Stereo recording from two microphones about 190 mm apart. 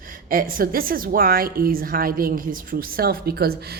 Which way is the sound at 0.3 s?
50° right (ahead or behind).